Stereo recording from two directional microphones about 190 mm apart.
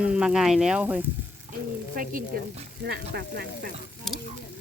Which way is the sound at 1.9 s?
45° right (ahead or behind).